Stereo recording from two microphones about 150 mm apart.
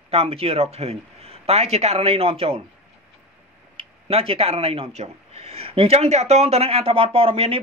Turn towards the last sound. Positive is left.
turn(degrees=-40)  # may be behind; listen again after turning